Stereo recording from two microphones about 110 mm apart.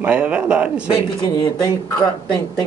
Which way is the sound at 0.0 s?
10° right (ahead or behind).